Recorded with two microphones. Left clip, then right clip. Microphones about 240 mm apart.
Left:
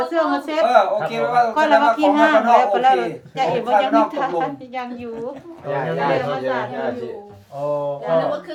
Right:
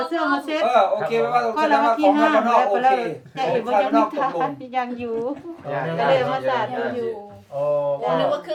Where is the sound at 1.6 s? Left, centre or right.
Centre.